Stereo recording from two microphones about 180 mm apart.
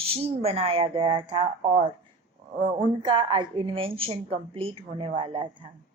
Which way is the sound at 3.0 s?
25° right (ahead or behind).